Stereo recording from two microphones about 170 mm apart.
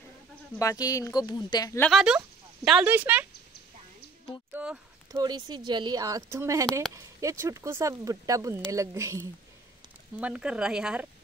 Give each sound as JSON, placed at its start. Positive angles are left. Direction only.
{"t": 0.6, "sound": "speech", "side_deg": 20}
{"t": 1.8, "sound": "speech", "side_deg": 0}
{"t": 4.6, "sound": "speech", "side_deg": -10}
{"t": 5.2, "sound": "speech", "side_deg": -25}